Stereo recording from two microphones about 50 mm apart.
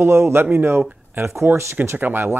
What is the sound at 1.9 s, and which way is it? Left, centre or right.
Speech, right.